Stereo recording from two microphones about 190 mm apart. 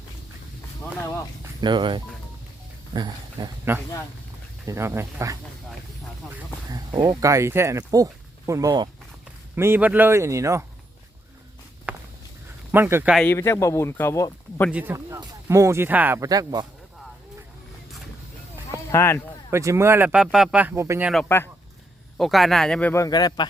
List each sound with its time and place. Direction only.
1.6 s speech: 25° right (ahead or behind)
4.6 s speech: 15° right (ahead or behind)
6.7 s speech: 20° right (ahead or behind)
11.9 s walk: 5° right (ahead or behind)
12.7 s speech: 10° right (ahead or behind)
13.1 s speech: 10° left (ahead or behind)
14.7 s speech: 10° right (ahead or behind)
18.9 s speech: 15° left (ahead or behind)
19.5 s speech: 15° right (ahead or behind)
21.2 s speech: 10° left (ahead or behind)
22.2 s speech: centre (ahead or behind); by 23.5 s 20° left (ahead or behind)